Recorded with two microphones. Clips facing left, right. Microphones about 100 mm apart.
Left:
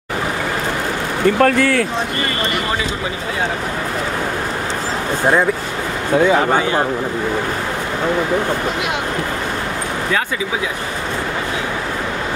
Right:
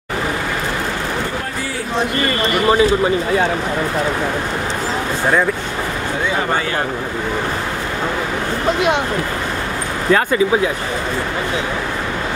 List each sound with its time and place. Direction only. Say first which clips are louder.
1.4 s speech: left 11 dB; 70° left (ahead or behind)